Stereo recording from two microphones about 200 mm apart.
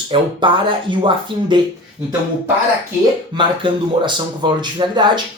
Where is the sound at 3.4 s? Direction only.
25° right (ahead or behind).